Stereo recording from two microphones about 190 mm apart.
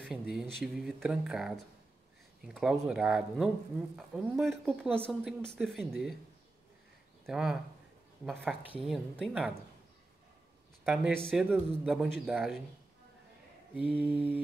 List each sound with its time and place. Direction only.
0.0 s speech: 5° right (ahead or behind)
7.2 s speech: centre (ahead or behind)
8.8 s speech: centre (ahead or behind)
10.8 s speech: centre (ahead or behind)
13.9 s mantra: 10° right (ahead or behind)